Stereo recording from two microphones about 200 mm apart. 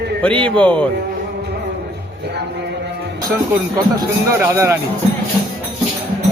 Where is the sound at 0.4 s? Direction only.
5° left (ahead or behind).